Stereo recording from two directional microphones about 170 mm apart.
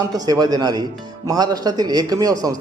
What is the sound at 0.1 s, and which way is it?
A man's voice, 20° right (ahead or behind).